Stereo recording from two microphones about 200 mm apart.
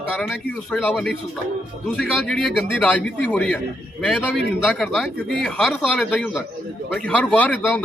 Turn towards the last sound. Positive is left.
turn(degrees=10)  # may be behind; listen again after turning